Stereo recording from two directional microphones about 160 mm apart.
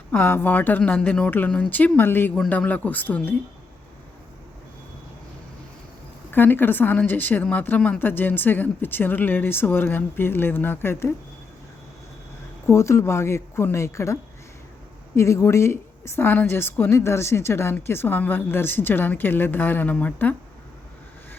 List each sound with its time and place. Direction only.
0.1 s a woman's voice: 15° left (ahead or behind)
6.3 s a woman's voice: 10° left (ahead or behind)
12.6 s a woman's voice: 15° left (ahead or behind)